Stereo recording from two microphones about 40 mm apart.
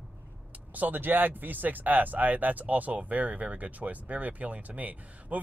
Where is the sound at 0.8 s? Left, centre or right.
Right.